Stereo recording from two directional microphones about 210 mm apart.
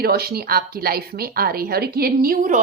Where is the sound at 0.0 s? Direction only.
45° right (ahead or behind).